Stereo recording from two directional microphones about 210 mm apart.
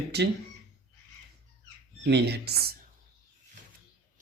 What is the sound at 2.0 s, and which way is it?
Speech, 50° right (ahead or behind).